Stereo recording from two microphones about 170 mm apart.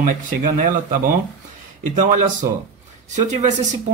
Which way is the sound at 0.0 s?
50° right (ahead or behind).